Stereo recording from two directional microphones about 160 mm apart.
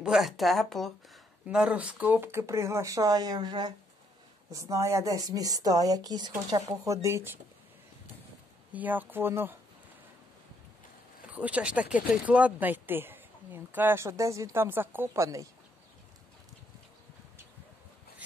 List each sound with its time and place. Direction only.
0.0 s a woman's voice: centre (ahead or behind); by 7.3 s 15° right (ahead or behind)
8.7 s speech: 10° right (ahead or behind)
11.2 s speech: 10° right (ahead or behind)